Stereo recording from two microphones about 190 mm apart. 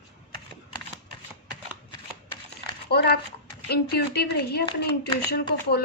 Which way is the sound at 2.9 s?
60° left (ahead or behind).